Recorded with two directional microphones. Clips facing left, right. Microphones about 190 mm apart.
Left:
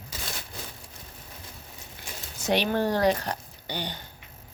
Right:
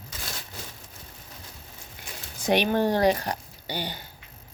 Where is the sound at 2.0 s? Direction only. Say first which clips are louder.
Even; 15° right (ahead or behind).